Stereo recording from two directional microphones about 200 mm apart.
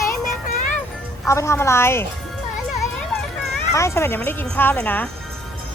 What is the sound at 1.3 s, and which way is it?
Speech, 15° left (ahead or behind).